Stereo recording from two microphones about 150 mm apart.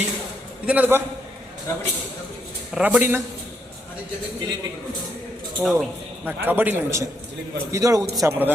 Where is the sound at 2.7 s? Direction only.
5° right (ahead or behind).